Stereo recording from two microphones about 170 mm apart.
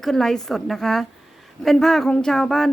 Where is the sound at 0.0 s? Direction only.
Centre (ahead or behind).